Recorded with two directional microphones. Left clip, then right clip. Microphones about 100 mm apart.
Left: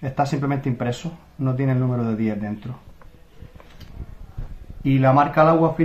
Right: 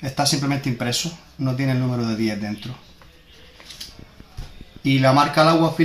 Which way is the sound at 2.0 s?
30° left (ahead or behind).